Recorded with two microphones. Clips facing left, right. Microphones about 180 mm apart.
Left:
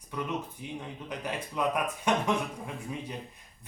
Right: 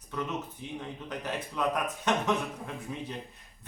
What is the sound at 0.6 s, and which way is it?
Speech, 10° left (ahead or behind).